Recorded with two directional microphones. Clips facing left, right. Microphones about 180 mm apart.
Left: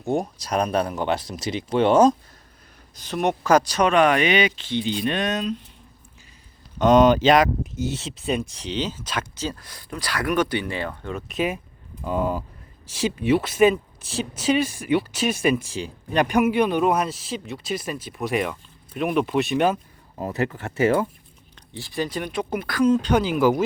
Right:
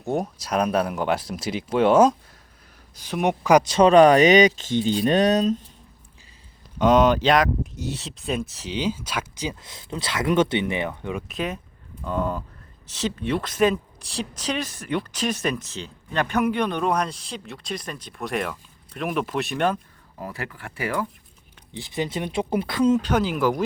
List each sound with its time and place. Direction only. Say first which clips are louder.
0.0 s speech: left 1 dB; 5° right (ahead or behind); by 5.6 s 40° right (ahead or behind)
6.7 s speech: left 2 dB; 5° right (ahead or behind)
11.3 s speech: left 4 dB; 5° left (ahead or behind)
20.1 s speech: left 8 dB; 25° left (ahead or behind)
21.7 s speech: even; 20° right (ahead or behind)
23.0 s speech: left 2 dB; 5° right (ahead or behind)